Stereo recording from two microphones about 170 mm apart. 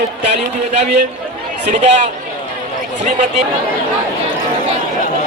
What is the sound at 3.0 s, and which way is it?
Speech, 45° right (ahead or behind).